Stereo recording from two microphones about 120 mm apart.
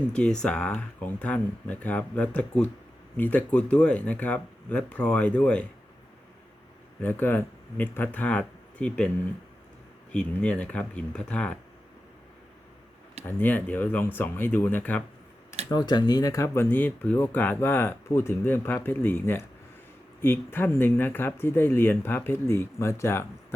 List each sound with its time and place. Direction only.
0.1 s speech: 5° left (ahead or behind)
7.0 s speech: 15° left (ahead or behind)
10.1 s speech: 10° left (ahead or behind)
13.2 s speech: 15° left (ahead or behind)
15.7 s speech: 35° left (ahead or behind)